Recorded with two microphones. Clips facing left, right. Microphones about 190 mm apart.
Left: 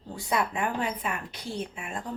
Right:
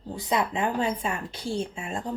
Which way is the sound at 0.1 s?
20° right (ahead or behind).